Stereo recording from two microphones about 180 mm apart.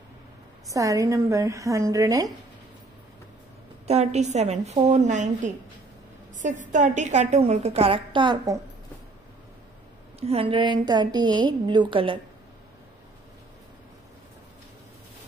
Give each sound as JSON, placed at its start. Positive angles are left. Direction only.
{"t": 0.7, "sound": "a woman's voice", "side_deg": -20}
{"t": 3.8, "sound": "a woman's voice", "side_deg": -35}
{"t": 10.2, "sound": "a woman's voice", "side_deg": -30}